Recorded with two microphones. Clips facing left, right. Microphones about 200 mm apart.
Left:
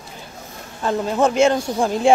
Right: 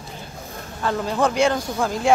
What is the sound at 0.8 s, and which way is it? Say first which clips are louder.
Speech: left 3 dB; 20° left (ahead or behind).